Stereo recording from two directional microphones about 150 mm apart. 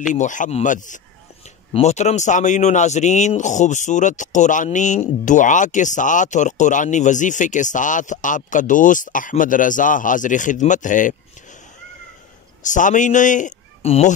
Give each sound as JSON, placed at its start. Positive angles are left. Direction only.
{"t": 0.1, "sound": "speech", "side_deg": 55}
{"t": 12.6, "sound": "speech", "side_deg": 55}
{"t": 13.8, "sound": "speech", "side_deg": 45}